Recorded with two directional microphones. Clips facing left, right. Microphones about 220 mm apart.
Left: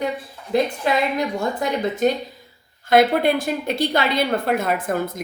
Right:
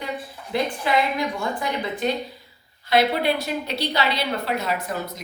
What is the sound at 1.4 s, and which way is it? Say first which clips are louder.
A woman's voice: left 4 dB; 40° left (ahead or behind).